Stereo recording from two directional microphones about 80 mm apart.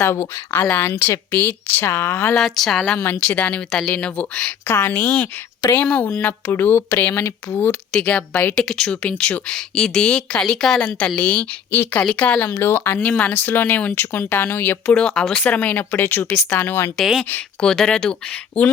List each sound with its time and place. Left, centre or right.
0.0 s speech: left
2.3 s speech: centre
3.2 s speech: centre
4.6 s speech: left
7.9 s speech: centre
8.5 s speech: centre
12.5 s speech: left
13.0 s speech: centre
14.9 s speech: centre; by 16.9 s left
17.0 s speech: centre
17.6 s speech: centre